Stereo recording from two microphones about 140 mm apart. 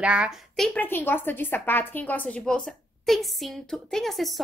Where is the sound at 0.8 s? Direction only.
15° left (ahead or behind).